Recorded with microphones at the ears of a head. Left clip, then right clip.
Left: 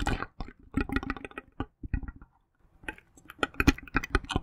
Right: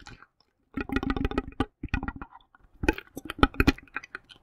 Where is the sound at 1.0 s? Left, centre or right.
Right.